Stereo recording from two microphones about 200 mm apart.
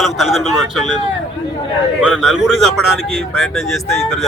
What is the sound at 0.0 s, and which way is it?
Speech, centre (ahead or behind).